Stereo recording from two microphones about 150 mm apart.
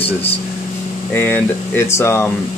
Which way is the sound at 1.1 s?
15° left (ahead or behind).